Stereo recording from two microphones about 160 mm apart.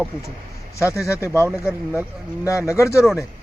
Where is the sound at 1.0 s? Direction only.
15° left (ahead or behind).